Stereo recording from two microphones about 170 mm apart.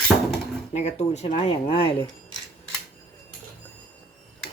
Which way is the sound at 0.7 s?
40° left (ahead or behind).